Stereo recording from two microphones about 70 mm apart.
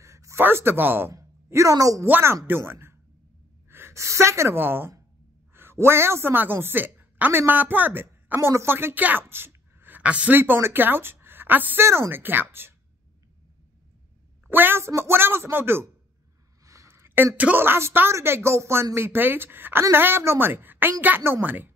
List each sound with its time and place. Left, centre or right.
0.0 s a sound: right
0.4 s speech: right
1.1 s a woman's voice: right
2.0 s a woman's voice: right
4.6 s a woman's voice: right
10.3 s speech: right
11.8 s speech: right
12.2 s speech: right
14.5 s speech: right
16.8 s a sound: right
17.4 s speech: right